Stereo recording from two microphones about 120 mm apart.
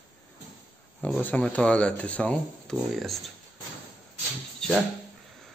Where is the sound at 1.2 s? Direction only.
15° left (ahead or behind).